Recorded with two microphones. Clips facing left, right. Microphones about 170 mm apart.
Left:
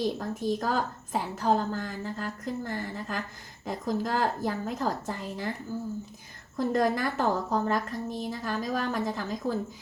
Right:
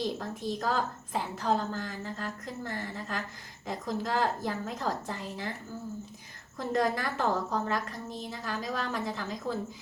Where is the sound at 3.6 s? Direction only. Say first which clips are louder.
Left 3 dB; 45° left (ahead or behind).